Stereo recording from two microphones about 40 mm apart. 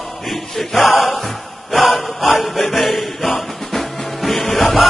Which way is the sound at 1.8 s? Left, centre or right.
Centre.